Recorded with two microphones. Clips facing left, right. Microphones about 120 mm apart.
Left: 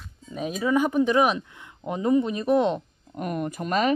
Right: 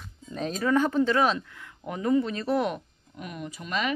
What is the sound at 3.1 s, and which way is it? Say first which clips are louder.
Speech: left 9 dB; 50° left (ahead or behind).